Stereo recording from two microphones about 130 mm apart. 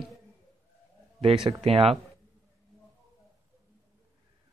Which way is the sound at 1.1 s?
40° right (ahead or behind).